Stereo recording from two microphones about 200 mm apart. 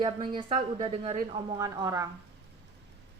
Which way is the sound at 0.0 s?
25° right (ahead or behind).